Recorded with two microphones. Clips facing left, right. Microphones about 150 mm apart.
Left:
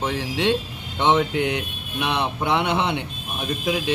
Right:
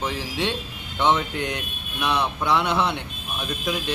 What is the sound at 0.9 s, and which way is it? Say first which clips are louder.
Speech: left 3 dB; 15° left (ahead or behind).